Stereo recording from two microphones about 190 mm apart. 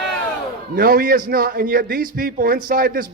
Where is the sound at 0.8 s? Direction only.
50° right (ahead or behind).